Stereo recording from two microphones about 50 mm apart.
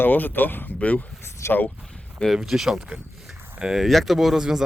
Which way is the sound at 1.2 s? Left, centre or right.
Left.